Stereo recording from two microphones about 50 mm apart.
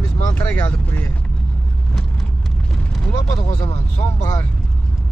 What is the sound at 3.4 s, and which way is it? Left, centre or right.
Speech, left.